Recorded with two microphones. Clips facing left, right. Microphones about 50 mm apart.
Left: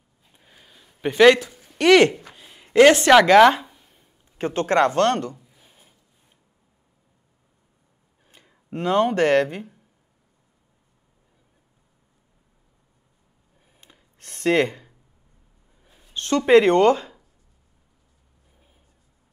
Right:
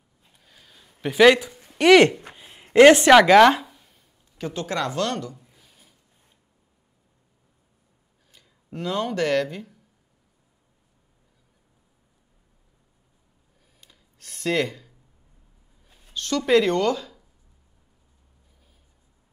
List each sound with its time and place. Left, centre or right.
0.3 s a sound: left
1.1 s speech: centre
1.8 s speech: centre
2.3 s a sound: centre
3.1 s speech: centre
4.4 s speech: left
5.6 s wood: left
8.3 s speech: left
13.7 s a sound: left
15.8 s speech: left